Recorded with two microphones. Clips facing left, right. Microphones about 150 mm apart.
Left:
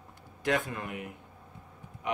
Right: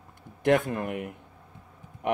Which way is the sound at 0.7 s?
55° right (ahead or behind).